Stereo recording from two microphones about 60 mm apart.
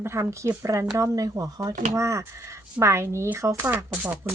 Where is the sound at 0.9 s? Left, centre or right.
Right.